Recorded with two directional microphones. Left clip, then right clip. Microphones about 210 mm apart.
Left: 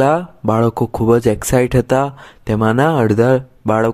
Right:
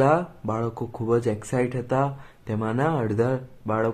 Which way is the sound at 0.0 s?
45° left (ahead or behind).